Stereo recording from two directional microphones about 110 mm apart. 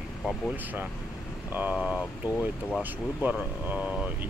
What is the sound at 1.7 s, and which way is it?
Speech, 10° right (ahead or behind).